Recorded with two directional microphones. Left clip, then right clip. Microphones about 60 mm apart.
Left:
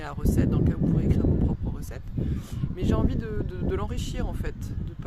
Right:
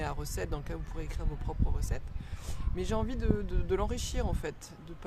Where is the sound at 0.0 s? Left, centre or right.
Centre.